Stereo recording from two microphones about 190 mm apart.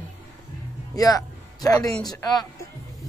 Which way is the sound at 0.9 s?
20° left (ahead or behind).